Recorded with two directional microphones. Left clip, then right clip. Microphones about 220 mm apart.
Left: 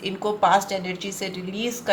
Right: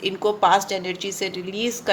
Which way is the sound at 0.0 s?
50° right (ahead or behind).